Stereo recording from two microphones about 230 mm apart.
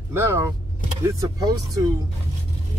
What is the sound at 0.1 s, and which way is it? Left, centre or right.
Speech, centre.